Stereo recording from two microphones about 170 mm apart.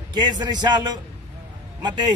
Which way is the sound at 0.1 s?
25° right (ahead or behind).